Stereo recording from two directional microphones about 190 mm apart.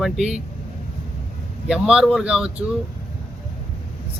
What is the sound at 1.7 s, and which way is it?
Speech, 5° right (ahead or behind).